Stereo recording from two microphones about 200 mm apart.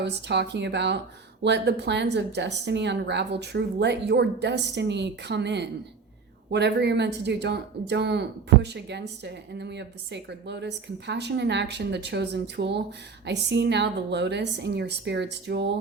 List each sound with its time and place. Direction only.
0.0 s speech: 60° right (ahead or behind)